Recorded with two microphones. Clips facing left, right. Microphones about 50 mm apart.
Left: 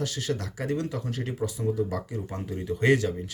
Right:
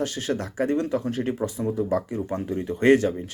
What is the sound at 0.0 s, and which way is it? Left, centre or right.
Speech, right.